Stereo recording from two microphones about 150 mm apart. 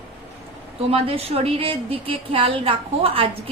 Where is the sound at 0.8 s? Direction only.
40° right (ahead or behind).